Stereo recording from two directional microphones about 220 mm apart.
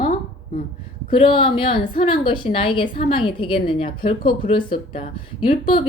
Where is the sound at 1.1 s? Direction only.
25° left (ahead or behind).